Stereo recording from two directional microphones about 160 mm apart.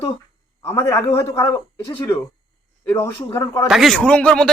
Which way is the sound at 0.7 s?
15° left (ahead or behind).